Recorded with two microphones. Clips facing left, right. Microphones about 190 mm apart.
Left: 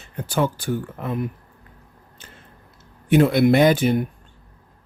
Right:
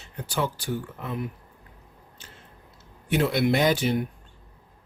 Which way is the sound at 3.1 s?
50° left (ahead or behind).